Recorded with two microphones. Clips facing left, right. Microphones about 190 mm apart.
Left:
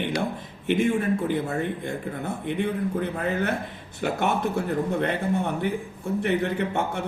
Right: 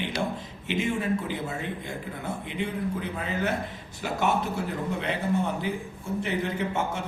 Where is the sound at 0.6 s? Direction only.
55° left (ahead or behind).